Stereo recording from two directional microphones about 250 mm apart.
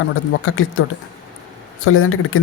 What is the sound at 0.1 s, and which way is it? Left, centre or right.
Speech, left.